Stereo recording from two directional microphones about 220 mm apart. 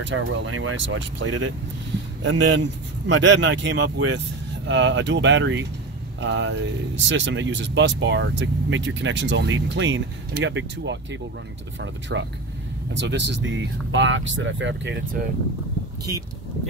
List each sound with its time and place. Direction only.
0.0 s speech: 60° right (ahead or behind)